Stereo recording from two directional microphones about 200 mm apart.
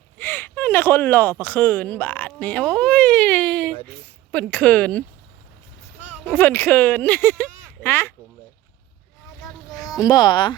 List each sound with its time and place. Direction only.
0.2 s speech: 10° left (ahead or behind)
6.2 s speech: 10° left (ahead or behind)
9.9 s speech: 20° left (ahead or behind)